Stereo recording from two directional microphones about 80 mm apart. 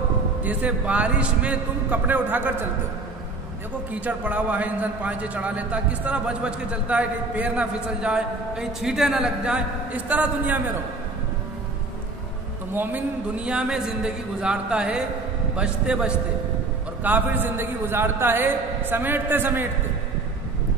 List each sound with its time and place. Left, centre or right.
0.4 s a man's voice: centre
3.9 s a man's voice: centre
12.7 s a man's voice: centre
17.0 s a man's voice: right